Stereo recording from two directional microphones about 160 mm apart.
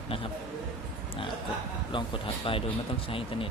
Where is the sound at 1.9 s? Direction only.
30° left (ahead or behind).